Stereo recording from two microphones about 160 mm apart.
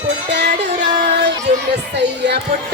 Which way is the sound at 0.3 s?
90° right.